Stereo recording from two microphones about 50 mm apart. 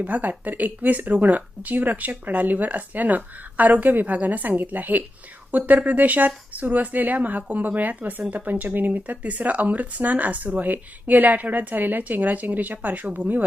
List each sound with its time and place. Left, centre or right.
0.0 s speech: right